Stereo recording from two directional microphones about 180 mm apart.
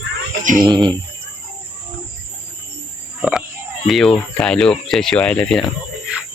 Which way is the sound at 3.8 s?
Centre (ahead or behind).